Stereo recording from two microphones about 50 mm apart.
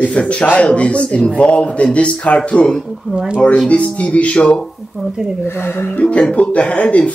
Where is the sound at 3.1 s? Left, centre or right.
Centre.